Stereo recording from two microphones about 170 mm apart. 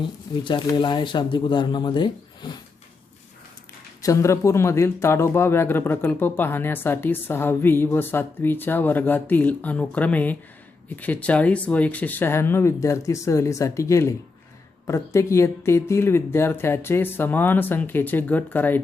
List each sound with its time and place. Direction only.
0.4 s speech: 25° left (ahead or behind)
4.0 s a man's voice: 20° left (ahead or behind)